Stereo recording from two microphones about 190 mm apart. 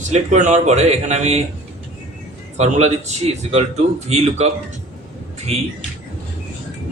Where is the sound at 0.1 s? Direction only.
40° right (ahead or behind).